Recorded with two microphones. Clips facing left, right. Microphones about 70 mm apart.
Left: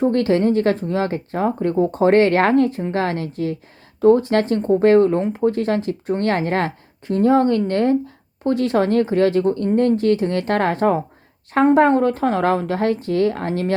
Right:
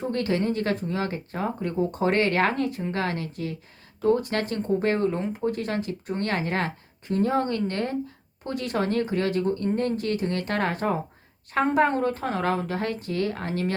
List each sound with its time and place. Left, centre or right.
0.0 s speech: left